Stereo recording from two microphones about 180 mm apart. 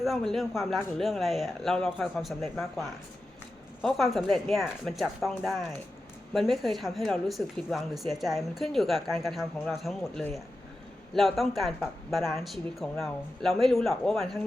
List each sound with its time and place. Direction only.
0.0 s speech: centre (ahead or behind)